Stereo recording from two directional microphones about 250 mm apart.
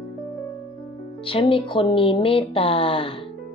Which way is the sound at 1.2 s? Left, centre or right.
Left.